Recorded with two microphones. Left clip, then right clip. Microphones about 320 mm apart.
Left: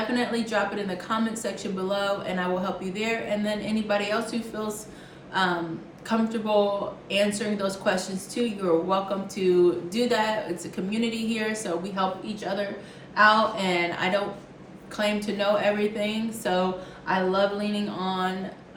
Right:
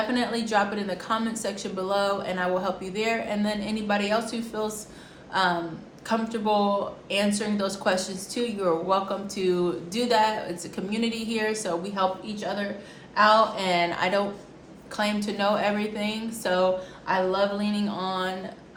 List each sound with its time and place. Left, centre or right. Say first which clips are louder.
0.1 s a woman's voice: right 1 dB; centre